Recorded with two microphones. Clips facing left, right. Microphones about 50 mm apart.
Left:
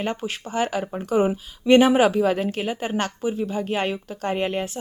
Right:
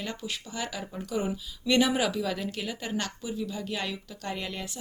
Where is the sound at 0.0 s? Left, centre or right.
Left.